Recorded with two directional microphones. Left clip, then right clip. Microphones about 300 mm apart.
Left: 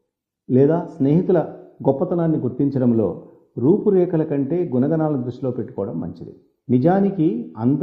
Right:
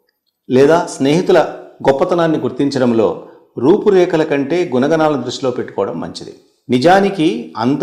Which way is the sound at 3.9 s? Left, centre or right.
Centre.